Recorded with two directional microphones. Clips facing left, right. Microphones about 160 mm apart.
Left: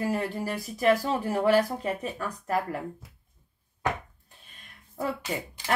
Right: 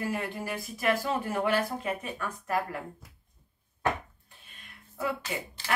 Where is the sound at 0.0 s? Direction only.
35° left (ahead or behind).